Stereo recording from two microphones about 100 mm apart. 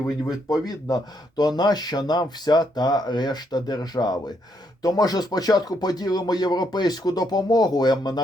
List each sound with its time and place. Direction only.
0.3 s speech: 40° left (ahead or behind)